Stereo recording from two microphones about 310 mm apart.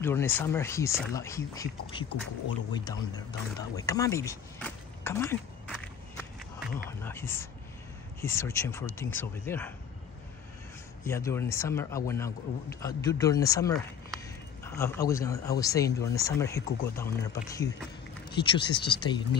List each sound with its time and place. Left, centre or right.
0.0 s speech: centre
3.5 s a sound: centre
6.9 s speech: centre
11.1 s speech: centre